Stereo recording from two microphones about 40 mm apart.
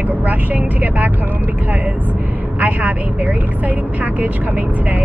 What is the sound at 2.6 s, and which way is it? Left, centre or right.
Speech, right.